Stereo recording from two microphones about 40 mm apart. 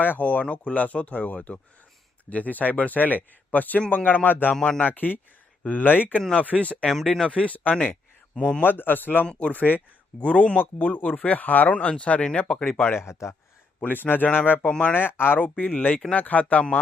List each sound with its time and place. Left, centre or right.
0.2 s speech: left
6.6 s speech: left
6.8 s speech: centre
7.3 s speech: left
8.6 s speech: left
9.5 s speech: left
10.2 s speech: left
10.6 s speech: left
11.8 s speech: left
12.6 s speech: left
14.7 s speech: left
14.9 s speech: left
15.4 s speech: left